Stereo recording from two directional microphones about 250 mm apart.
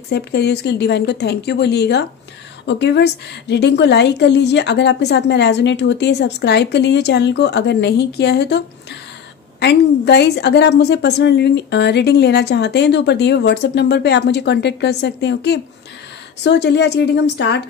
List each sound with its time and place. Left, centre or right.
0.1 s a woman's voice: left